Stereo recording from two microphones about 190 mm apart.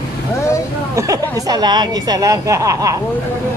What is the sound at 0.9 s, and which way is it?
Speech, 20° right (ahead or behind).